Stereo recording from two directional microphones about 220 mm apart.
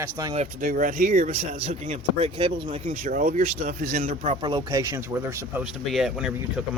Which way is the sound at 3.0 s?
40° right (ahead or behind).